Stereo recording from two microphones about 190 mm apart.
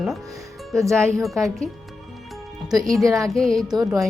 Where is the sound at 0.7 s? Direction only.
Centre (ahead or behind).